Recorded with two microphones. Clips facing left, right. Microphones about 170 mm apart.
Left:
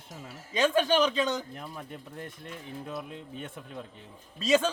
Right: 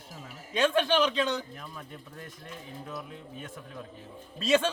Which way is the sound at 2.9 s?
20° left (ahead or behind).